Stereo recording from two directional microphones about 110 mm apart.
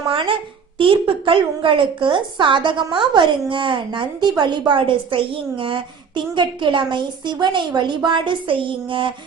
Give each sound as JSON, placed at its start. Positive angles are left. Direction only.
{"t": 0.1, "sound": "a child's voice", "side_deg": -50}